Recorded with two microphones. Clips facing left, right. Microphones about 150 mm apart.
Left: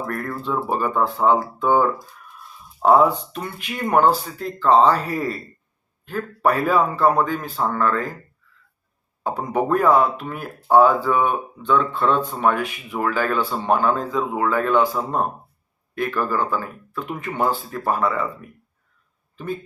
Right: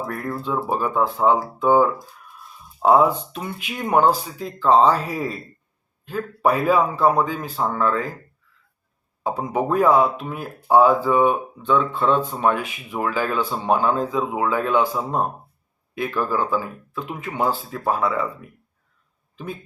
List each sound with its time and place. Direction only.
0.0 s a man's voice: 5° right (ahead or behind)
9.2 s speech: 5° right (ahead or behind)